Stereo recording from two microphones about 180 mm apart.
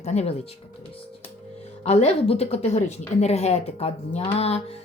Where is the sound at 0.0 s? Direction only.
35° left (ahead or behind).